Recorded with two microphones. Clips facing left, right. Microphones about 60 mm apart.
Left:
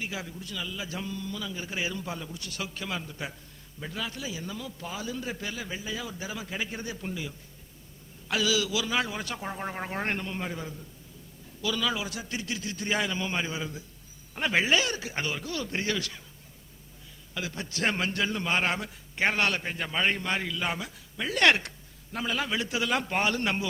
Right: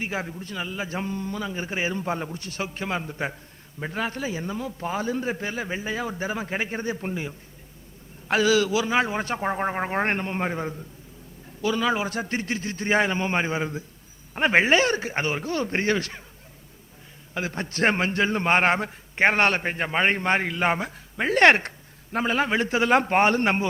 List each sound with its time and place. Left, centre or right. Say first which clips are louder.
0.0 s a man's voice: right 6 dB; right
17.3 s a man's voice: right 6 dB; right